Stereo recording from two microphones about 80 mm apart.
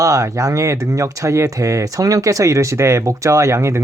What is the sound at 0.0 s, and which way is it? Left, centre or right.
Speech, right.